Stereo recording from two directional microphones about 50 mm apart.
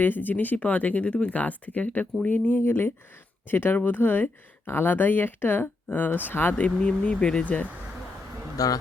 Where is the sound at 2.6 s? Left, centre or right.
Left.